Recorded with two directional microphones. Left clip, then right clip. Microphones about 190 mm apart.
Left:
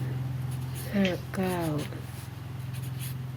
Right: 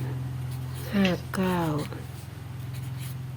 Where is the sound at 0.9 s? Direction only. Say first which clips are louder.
Right 2 dB; 10° right (ahead or behind).